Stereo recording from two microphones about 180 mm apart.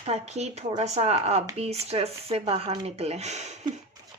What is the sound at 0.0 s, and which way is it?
Speech, 35° right (ahead or behind).